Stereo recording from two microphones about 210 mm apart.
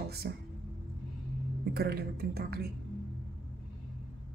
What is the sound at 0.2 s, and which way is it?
Speech, 50° right (ahead or behind).